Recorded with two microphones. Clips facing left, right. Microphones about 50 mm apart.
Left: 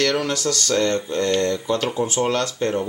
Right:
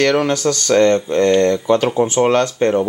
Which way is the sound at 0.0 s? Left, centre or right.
Right.